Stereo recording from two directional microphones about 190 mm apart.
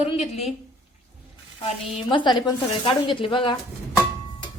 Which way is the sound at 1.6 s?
25° left (ahead or behind).